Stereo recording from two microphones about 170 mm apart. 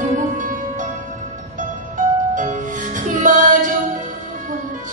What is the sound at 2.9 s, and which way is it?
Music, 50° right (ahead or behind).